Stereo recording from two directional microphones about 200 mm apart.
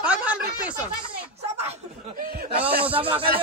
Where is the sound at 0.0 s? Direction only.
5° right (ahead or behind).